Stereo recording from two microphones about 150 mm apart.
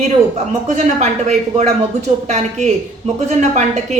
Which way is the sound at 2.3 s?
50° right (ahead or behind).